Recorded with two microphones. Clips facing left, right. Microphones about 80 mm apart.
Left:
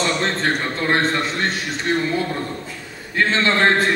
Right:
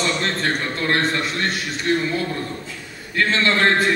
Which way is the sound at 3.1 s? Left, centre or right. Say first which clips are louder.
Left 1 dB; left.